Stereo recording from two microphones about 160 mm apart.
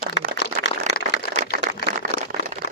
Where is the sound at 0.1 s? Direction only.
90° left.